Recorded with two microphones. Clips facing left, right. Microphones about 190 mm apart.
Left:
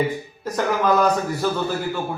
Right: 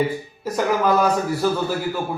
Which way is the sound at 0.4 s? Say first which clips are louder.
Right 1 dB; 10° right (ahead or behind).